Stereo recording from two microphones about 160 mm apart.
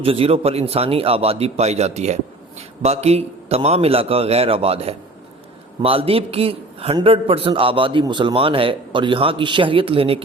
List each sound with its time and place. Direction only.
0.0 s a man's voice: 35° right (ahead or behind)